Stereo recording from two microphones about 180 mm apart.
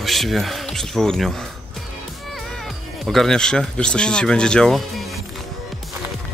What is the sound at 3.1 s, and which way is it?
Speech, centre (ahead or behind).